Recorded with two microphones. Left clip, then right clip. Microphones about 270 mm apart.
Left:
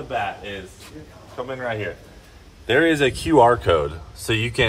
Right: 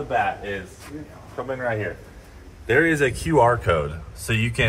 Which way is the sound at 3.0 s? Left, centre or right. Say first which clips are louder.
Left 3 dB; left.